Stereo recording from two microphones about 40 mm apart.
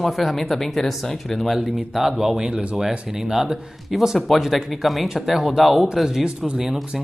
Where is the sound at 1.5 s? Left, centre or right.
Centre.